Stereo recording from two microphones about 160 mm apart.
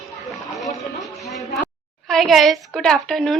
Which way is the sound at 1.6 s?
5° left (ahead or behind).